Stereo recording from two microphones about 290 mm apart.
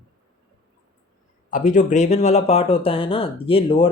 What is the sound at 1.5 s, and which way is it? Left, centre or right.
Speech, left.